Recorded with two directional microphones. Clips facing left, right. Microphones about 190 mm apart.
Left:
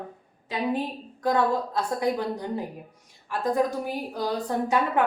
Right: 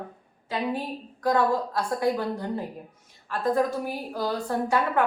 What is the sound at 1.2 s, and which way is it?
A woman's voice, 20° left (ahead or behind).